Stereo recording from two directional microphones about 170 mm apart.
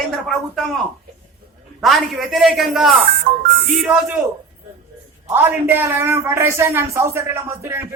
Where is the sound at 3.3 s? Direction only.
45° right (ahead or behind).